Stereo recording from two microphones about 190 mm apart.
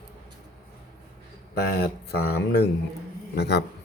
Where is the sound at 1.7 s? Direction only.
55° left (ahead or behind).